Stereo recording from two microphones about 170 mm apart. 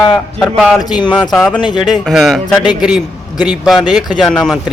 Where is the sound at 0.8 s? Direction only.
25° left (ahead or behind).